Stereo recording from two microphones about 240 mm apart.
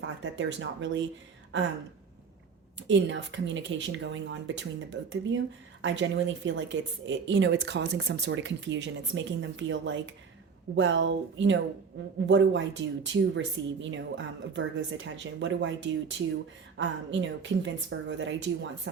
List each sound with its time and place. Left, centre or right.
0.0 s a woman's voice: right
2.8 s a woman's voice: right